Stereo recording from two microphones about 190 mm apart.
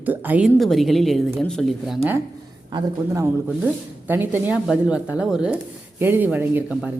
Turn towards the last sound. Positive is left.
turn(degrees=-10)  # may be behind; listen again after turning